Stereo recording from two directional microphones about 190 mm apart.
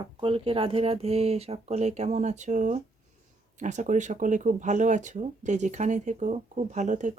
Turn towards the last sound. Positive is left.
turn(degrees=-40)  # may be behind; listen again after turning